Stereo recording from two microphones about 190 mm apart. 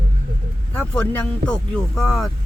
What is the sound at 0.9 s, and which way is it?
Speech, 5° left (ahead or behind).